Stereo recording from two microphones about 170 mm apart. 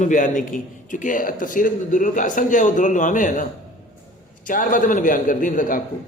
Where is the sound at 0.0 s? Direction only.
50° left (ahead or behind).